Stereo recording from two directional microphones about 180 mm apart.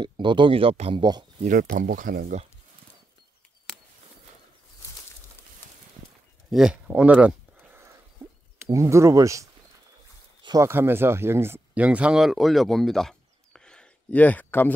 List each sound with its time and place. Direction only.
0.0 s speech: 25° right (ahead or behind)
1.4 s speech: 50° right (ahead or behind)
6.5 s a sound: 5° right (ahead or behind)
8.6 s speech: 15° right (ahead or behind); by 14.7 s 10° left (ahead or behind)